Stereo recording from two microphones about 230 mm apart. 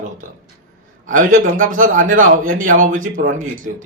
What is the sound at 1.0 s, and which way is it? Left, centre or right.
A man's voice, right.